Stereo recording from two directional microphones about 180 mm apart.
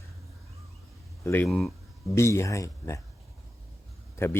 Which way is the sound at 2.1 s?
15° left (ahead or behind).